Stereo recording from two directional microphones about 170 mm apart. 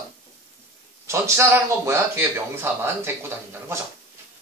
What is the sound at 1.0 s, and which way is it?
A man's voice, 15° right (ahead or behind).